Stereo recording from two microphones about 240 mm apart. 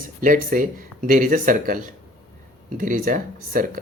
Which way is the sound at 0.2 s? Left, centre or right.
Right.